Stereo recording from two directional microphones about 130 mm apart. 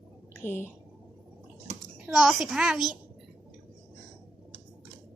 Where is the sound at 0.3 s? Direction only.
15° left (ahead or behind).